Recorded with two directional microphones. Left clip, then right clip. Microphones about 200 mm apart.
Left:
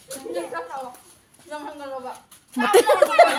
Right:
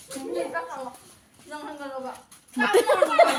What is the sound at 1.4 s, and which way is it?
A woman's voice, 40° left (ahead or behind).